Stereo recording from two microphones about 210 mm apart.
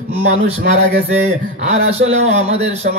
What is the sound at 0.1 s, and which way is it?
Speech, 30° right (ahead or behind).